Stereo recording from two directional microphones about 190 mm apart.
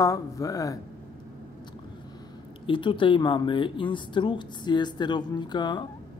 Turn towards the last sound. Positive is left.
turn(degrees=25)  # may be behind; listen again after turning